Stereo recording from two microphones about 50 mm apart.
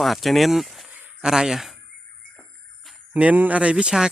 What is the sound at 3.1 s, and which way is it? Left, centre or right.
Speech, right.